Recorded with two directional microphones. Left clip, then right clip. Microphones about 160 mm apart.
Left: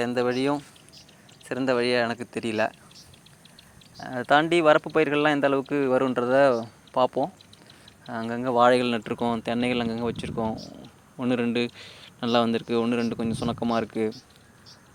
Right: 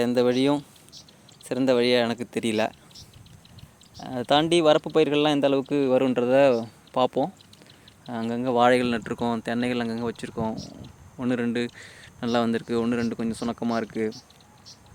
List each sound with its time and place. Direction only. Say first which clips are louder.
0.0 s speech: right 3 dB; 40° right (ahead or behind)
3.9 s speech: left 1 dB; 30° right (ahead or behind); by 14.2 s centre (ahead or behind)